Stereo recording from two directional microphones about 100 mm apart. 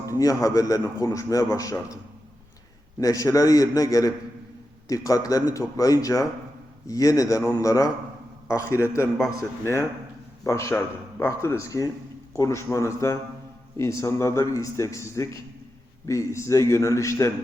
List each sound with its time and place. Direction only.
0.0 s a man's voice: 35° left (ahead or behind)
3.0 s a man's voice: 35° left (ahead or behind)
10.4 s a man's voice: 30° left (ahead or behind)